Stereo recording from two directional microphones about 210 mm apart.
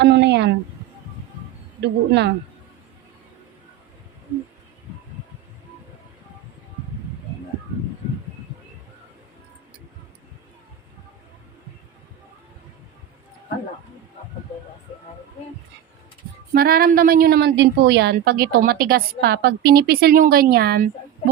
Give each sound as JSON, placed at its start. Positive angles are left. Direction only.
{"t": 0.0, "sound": "speech", "side_deg": -55}
{"t": 1.8, "sound": "a woman's voice", "side_deg": -55}
{"t": 16.6, "sound": "a woman's voice", "side_deg": -45}